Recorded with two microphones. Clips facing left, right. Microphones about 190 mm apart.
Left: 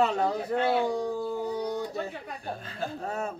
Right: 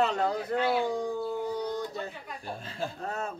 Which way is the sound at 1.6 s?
5° left (ahead or behind).